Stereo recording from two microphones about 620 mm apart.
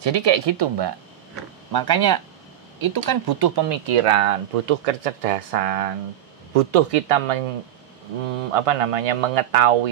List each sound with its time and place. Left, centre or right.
0.0 s speech: right
3.8 s speech: right
8.5 s speech: right